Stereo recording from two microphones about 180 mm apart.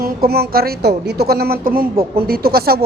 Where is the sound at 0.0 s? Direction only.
60° right (ahead or behind).